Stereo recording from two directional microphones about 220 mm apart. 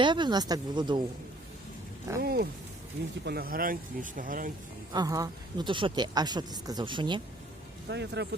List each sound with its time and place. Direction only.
0.0 s speech: 20° right (ahead or behind)
2.2 s speech: 45° right (ahead or behind)
4.9 s speech: 15° right (ahead or behind)
7.9 s speech: 50° right (ahead or behind)